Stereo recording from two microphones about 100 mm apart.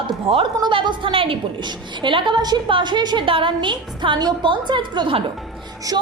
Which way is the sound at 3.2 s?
60° right (ahead or behind).